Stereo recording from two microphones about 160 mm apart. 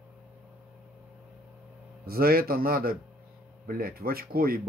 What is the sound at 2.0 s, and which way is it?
Speech, 70° right (ahead or behind).